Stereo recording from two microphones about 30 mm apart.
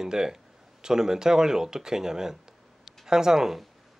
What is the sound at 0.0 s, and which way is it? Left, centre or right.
Speech, right.